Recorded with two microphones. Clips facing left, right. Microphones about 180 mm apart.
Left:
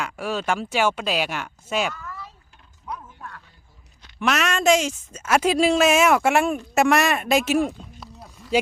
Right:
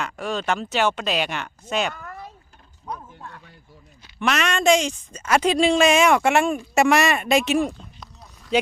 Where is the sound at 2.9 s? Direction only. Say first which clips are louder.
Right 1 dB; 25° right (ahead or behind).